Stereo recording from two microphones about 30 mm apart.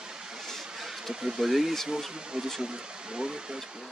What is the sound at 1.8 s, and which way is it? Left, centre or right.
Speech, right.